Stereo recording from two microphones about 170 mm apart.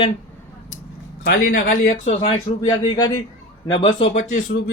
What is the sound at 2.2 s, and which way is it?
A man's voice, 25° left (ahead or behind).